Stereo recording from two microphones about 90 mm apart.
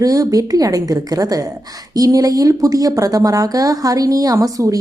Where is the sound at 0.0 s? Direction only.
40° right (ahead or behind).